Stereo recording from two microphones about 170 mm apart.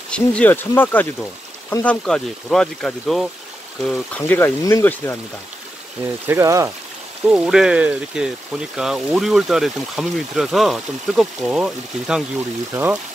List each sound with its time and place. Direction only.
0.1 s speech: 5° left (ahead or behind)
6.2 s speech: 15° right (ahead or behind)
7.2 s speech: 5° right (ahead or behind)